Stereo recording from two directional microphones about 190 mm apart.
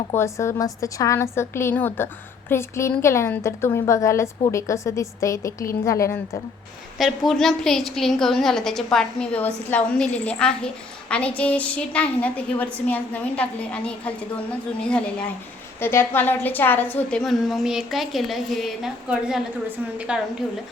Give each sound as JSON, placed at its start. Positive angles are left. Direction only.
{"t": 0.1, "sound": "a woman's voice", "side_deg": 15}
{"t": 7.0, "sound": "a woman's voice", "side_deg": 0}